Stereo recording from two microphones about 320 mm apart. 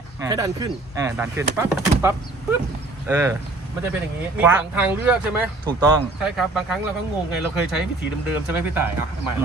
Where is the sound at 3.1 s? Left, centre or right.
Centre.